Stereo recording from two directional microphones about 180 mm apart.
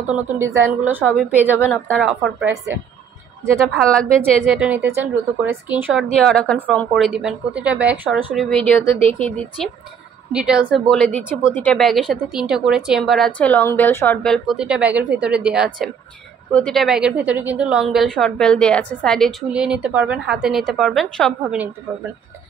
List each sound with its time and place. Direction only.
0.4 s a woman's voice: 10° right (ahead or behind)
2.4 s a woman's voice: 15° right (ahead or behind)
3.7 s a woman's voice: 5° left (ahead or behind)
4.6 s a woman's voice: 10° right (ahead or behind)
6.0 s a woman's voice: 5° left (ahead or behind)
8.4 s speech: 5° left (ahead or behind)
10.3 s a woman's voice: 5° right (ahead or behind)
10.9 s a woman's voice: 5° left (ahead or behind)